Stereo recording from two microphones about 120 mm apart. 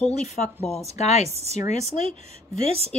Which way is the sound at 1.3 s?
60° right (ahead or behind).